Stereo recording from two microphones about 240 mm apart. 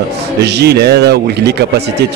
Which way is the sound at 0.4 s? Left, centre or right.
Right.